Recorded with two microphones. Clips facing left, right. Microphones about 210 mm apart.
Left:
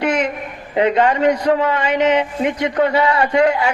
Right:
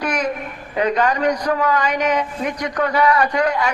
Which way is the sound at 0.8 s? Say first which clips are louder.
Left 3 dB; 25° left (ahead or behind).